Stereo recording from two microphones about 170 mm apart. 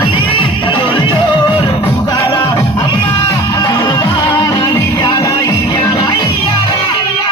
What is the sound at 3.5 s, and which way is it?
Music, 25° left (ahead or behind).